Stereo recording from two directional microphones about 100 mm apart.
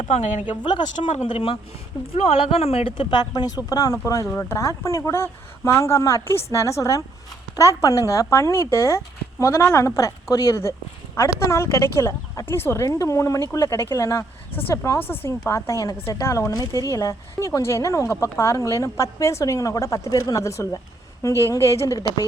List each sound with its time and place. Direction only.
0.4 s speech: 50° left (ahead or behind)
1.1 s a woman's voice: 70° left (ahead or behind); by 21.9 s 30° left (ahead or behind)